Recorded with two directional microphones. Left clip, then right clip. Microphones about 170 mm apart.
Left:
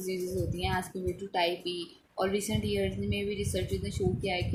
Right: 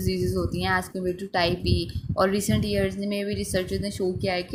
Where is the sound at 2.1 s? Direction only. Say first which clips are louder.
Right 7 dB; 55° right (ahead or behind).